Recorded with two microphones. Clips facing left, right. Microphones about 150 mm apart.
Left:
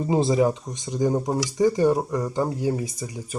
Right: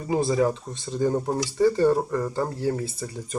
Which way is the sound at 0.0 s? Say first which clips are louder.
Left 2 dB; 25° left (ahead or behind).